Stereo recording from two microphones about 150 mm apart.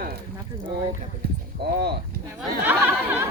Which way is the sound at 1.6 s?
90° right.